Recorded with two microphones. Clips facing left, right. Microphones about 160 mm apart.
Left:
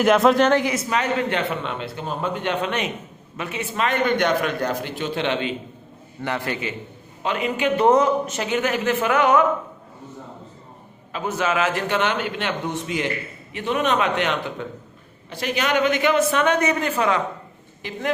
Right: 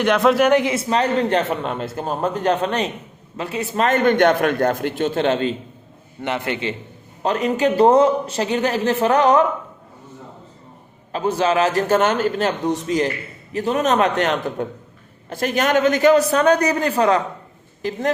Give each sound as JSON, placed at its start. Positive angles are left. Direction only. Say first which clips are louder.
{"t": 0.0, "sound": "a man's voice", "louder": "even", "side_deg": 0}
{"t": 0.4, "sound": "a man's voice", "louder": "right 3 dB", "side_deg": -20}
{"t": 6.2, "sound": "a man's voice", "louder": "right 3 dB", "side_deg": -20}
{"t": 7.2, "sound": "a man's voice", "louder": "right 5 dB", "side_deg": -40}
{"t": 11.1, "sound": "a man's voice", "louder": "right 5 dB", "side_deg": -30}